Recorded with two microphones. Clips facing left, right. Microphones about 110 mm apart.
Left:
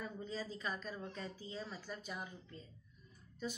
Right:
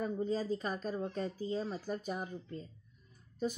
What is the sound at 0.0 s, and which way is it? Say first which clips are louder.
A woman's voice: right 10 dB; 45° right (ahead or behind).